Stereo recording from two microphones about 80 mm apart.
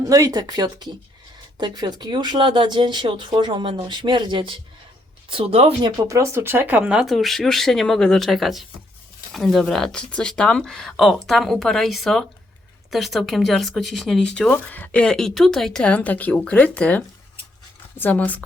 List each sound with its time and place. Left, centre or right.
0.0 s speech: right
6.1 s speech: right; by 7.0 s centre
7.0 s speech: centre
14.5 s speech: left; by 15.8 s centre
15.8 s a woman's voice: centre